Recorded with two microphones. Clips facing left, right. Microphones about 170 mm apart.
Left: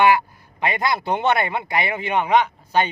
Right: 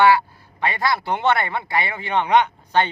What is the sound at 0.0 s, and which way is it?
Speech, 15° left (ahead or behind).